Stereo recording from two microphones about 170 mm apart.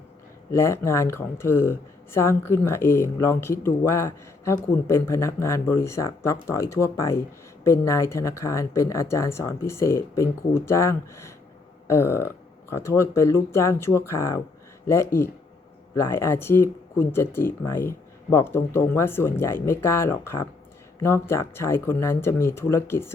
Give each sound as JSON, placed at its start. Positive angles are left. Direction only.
{"t": 0.5, "sound": "speech", "side_deg": 15}